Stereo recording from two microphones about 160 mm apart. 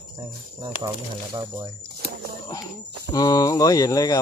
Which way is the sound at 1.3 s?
20° right (ahead or behind).